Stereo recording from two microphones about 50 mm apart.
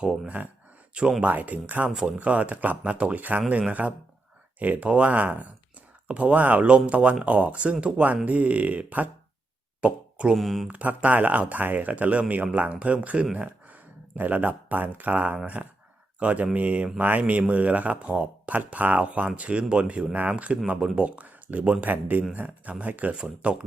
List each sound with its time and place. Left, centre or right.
0.0 s speech: centre
1.2 s speech: right
9.8 s a sound: right
10.3 s speech: centre
10.7 s speech: right
21.8 s speech: right